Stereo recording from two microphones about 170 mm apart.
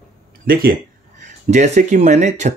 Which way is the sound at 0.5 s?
60° right (ahead or behind).